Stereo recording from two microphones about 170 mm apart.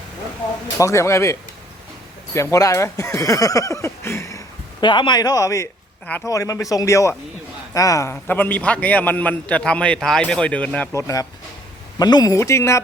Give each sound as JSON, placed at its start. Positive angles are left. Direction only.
{"t": 0.8, "sound": "a man's voice", "side_deg": 15}
{"t": 11.0, "sound": "speech", "side_deg": 20}